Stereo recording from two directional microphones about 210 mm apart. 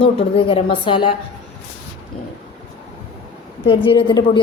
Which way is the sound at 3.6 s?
25° left (ahead or behind).